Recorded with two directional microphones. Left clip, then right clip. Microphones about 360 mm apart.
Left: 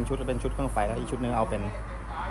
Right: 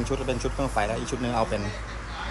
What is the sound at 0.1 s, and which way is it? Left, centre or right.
Speech, centre.